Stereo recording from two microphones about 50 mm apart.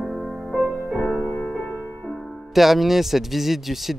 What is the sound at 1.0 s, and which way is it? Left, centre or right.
Music, centre.